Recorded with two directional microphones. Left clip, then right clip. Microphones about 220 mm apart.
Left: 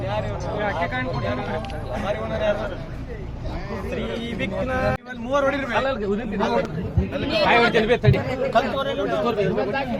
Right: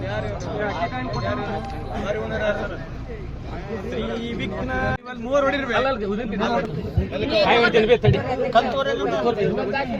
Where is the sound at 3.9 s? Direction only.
15° left (ahead or behind).